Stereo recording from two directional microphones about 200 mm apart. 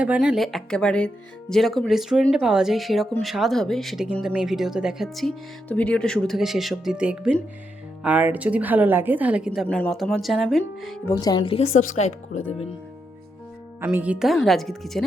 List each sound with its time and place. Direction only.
0.0 s a woman's voice: 5° right (ahead or behind)
9.5 s speech: 5° left (ahead or behind)
11.0 s speech: 15° left (ahead or behind); by 12.4 s 35° left (ahead or behind)
13.8 s speech: 5° right (ahead or behind)